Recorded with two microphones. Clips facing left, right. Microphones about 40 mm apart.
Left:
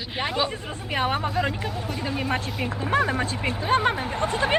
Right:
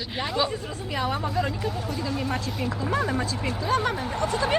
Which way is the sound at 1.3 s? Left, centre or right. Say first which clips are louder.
Left 1 dB; left.